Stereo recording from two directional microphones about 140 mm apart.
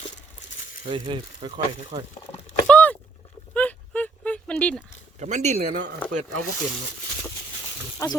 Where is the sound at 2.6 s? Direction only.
10° left (ahead or behind).